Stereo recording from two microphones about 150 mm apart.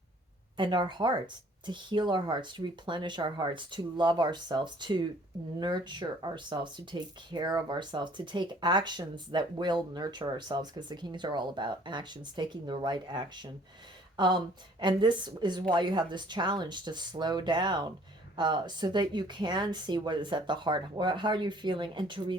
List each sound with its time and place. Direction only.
0.5 s speech: 30° right (ahead or behind)